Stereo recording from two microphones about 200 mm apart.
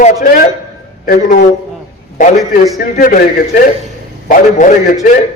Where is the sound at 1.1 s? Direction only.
50° left (ahead or behind).